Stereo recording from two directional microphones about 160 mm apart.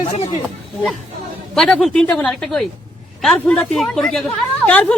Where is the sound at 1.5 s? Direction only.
5° left (ahead or behind).